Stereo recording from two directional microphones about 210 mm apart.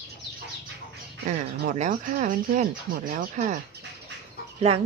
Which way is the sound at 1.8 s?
40° right (ahead or behind).